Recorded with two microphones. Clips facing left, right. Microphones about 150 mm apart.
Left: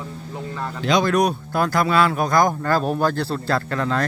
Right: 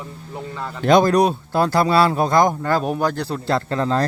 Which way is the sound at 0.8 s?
50° right (ahead or behind).